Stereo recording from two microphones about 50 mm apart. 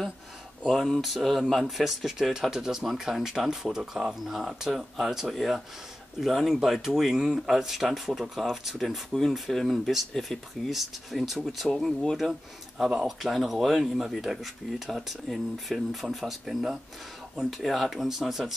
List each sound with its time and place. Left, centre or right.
0.7 s speech: centre